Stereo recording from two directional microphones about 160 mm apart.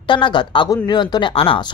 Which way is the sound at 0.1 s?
30° left (ahead or behind).